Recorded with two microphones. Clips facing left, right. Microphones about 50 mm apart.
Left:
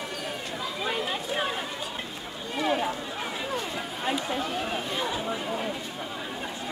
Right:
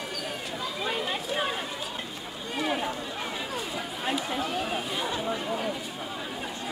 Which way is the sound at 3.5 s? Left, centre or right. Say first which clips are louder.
Left 1 dB; centre.